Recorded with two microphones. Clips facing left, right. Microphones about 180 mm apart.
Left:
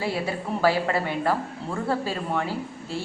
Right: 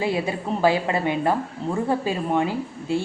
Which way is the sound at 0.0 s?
20° right (ahead or behind).